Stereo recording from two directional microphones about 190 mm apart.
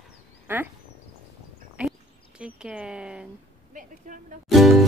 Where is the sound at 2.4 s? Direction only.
5° right (ahead or behind).